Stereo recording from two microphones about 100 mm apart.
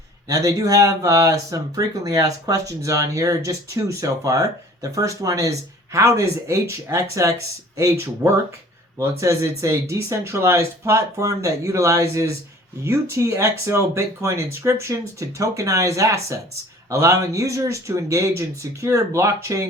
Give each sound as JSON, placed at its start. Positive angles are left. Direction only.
{"t": 0.3, "sound": "speech", "side_deg": -35}